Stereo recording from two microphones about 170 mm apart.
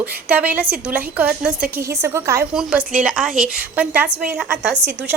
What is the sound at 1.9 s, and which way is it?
Speech, 15° right (ahead or behind).